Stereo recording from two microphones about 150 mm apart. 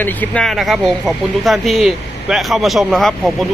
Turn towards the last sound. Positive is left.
turn(degrees=0)  # may be behind; listen again after turning